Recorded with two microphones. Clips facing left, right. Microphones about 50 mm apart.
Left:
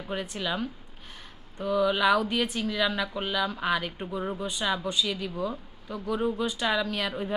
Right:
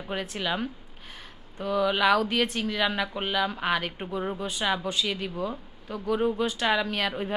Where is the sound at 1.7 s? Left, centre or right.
Centre.